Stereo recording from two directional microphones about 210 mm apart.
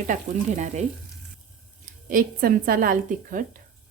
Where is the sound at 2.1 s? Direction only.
45° right (ahead or behind).